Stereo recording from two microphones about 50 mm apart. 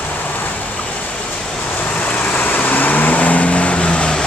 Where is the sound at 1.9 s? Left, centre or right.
Left.